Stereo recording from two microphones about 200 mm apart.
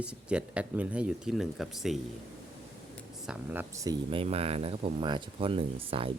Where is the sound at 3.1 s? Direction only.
5° right (ahead or behind).